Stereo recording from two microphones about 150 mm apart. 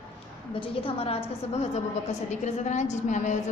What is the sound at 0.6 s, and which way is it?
A woman's voice, 40° left (ahead or behind).